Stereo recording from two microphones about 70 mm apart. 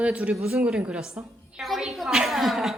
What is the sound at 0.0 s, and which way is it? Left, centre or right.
A woman's voice, centre.